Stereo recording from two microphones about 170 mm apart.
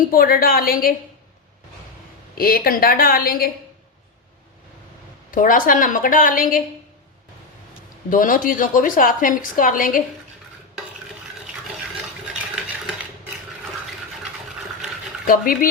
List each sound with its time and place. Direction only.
0.0 s a woman's voice: 60° left (ahead or behind)
2.4 s a woman's voice: 60° left (ahead or behind)
5.3 s a woman's voice: 55° left (ahead or behind)
8.1 s a woman's voice: 55° left (ahead or behind)
15.3 s a woman's voice: 55° left (ahead or behind)